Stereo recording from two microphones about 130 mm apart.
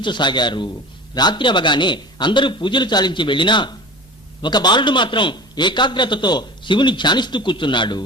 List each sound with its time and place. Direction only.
0.0 s a man's voice: 35° left (ahead or behind)